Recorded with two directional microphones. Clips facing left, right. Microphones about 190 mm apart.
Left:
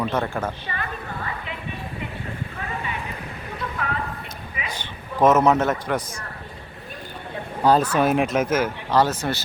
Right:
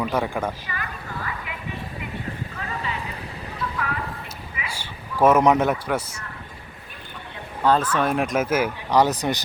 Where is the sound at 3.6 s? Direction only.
30° left (ahead or behind).